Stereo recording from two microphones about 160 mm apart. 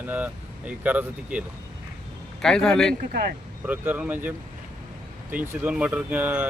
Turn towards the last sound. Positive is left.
turn(degrees=-10)  # may be behind; listen again after turning